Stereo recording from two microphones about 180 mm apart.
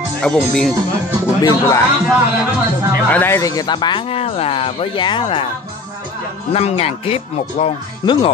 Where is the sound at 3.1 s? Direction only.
10° left (ahead or behind); by 5.4 s 30° left (ahead or behind).